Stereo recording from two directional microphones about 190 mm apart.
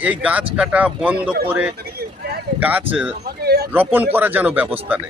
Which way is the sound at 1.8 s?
55° right (ahead or behind).